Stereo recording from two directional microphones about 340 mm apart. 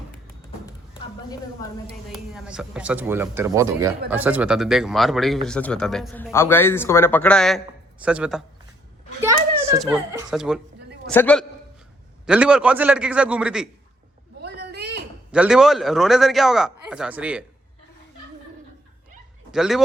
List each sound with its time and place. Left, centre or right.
2.0 s a child's voice: centre
14.4 s a sound: right
15.3 s speech: centre
19.5 s speech: centre